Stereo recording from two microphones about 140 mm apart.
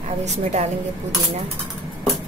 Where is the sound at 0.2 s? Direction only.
55° right (ahead or behind).